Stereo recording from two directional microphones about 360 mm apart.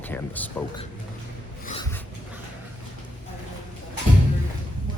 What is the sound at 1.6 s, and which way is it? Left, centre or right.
Writing, centre.